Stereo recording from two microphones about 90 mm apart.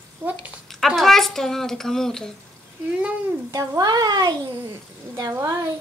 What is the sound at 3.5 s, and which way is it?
Speech, 45° right (ahead or behind).